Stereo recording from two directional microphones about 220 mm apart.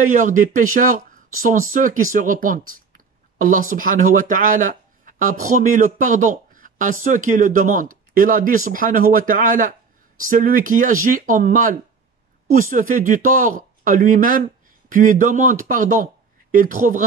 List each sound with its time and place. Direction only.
0.0 s speech: 35° right (ahead or behind)